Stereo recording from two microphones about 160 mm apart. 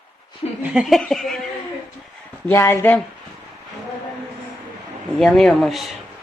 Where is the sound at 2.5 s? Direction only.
15° left (ahead or behind).